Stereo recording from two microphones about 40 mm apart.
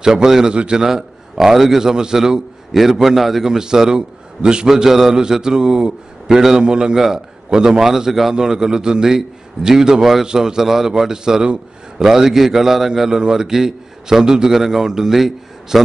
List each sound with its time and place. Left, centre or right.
0.0 s a man's voice: centre
4.6 s a man's voice: centre
6.6 s a man's voice: centre